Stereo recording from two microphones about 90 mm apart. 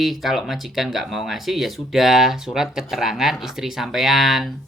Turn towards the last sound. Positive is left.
turn(degrees=0)  # may be behind; listen again after turning